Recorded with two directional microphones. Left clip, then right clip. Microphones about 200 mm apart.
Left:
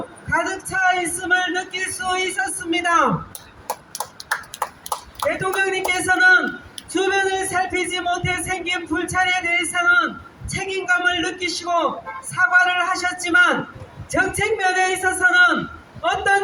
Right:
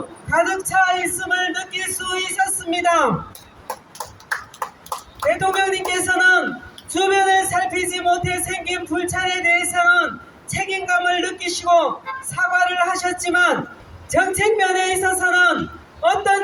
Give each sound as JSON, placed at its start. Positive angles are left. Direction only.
{"t": 0.3, "sound": "speech", "side_deg": -25}
{"t": 4.6, "sound": "a sound", "side_deg": 30}
{"t": 5.4, "sound": "a woman's voice", "side_deg": -25}